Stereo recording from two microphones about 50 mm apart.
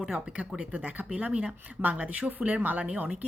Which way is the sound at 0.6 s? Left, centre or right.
Right.